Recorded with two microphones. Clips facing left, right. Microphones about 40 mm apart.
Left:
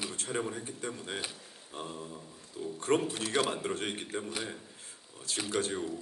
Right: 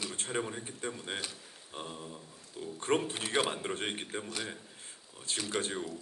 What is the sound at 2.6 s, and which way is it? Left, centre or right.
A man's voice, centre.